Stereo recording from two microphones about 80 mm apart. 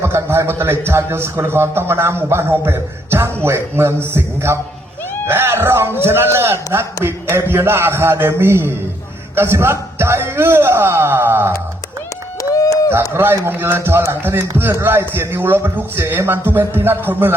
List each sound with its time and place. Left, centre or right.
0.0 s a man's voice: right
12.4 s a sound: left
12.9 s a man's voice: right